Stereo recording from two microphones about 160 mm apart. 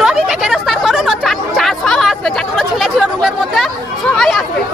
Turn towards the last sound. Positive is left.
turn(degrees=0)  # may be behind; listen again after turning